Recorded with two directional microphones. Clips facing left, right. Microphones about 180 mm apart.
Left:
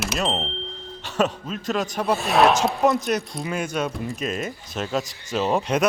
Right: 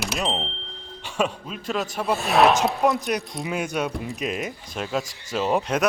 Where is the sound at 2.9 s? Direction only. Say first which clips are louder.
Left 2 dB; 10° right (ahead or behind).